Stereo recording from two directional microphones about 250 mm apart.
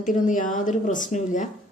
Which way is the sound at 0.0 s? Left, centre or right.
Left.